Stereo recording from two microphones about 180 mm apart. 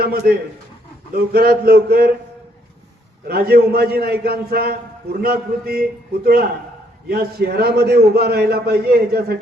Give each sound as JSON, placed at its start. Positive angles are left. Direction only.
{"t": 0.0, "sound": "a man's voice", "side_deg": -55}
{"t": 3.2, "sound": "a man's voice", "side_deg": -60}